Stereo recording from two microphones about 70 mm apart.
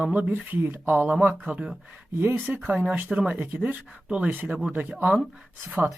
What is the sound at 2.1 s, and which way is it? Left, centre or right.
Speech, right.